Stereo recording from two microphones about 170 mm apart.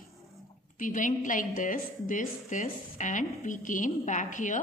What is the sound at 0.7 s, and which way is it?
A woman's voice, 50° left (ahead or behind).